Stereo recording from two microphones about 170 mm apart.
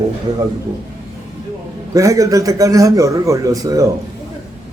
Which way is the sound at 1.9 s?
20° right (ahead or behind).